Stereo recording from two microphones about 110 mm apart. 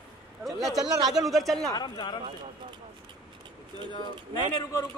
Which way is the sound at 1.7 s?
40° left (ahead or behind).